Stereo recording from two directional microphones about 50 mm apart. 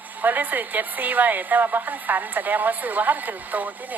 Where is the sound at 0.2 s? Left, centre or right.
Right.